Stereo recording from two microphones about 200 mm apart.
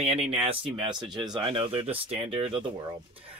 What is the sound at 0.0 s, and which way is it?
Speech, 30° right (ahead or behind).